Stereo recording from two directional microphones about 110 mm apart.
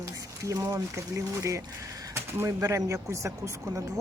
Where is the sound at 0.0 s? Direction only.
30° right (ahead or behind).